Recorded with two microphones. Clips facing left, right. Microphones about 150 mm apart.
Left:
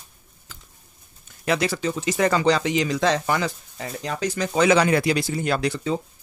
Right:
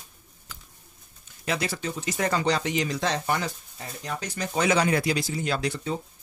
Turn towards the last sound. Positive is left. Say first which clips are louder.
# left 5 dB
turn(degrees=90)